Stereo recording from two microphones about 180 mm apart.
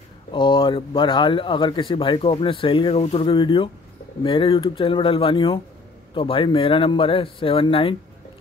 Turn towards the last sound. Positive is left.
turn(degrees=30)  # may be behind; listen again after turning